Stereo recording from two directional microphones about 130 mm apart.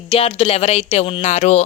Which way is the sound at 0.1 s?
45° left (ahead or behind).